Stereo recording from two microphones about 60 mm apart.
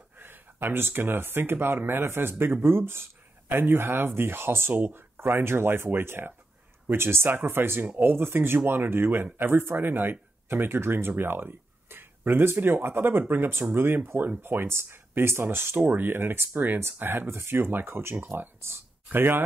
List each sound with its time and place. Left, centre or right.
0.2 s speech: right